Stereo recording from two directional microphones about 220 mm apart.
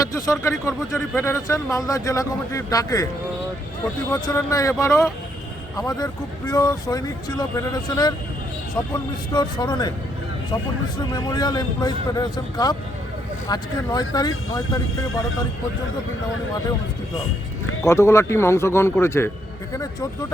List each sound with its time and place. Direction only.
0.1 s speech: 15° left (ahead or behind)
4.1 s speech: 15° left (ahead or behind)
9.3 s a man's voice: 20° left (ahead or behind)
10.9 s a man's voice: 20° left (ahead or behind)
17.8 s speech: 15° left (ahead or behind)